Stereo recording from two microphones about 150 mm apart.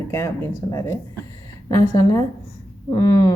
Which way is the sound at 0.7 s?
20° left (ahead or behind).